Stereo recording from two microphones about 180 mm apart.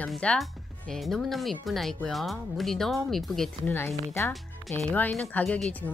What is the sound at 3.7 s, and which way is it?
Speech, 15° left (ahead or behind).